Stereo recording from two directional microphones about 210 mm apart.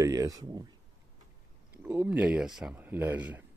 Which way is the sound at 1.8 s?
10° right (ahead or behind).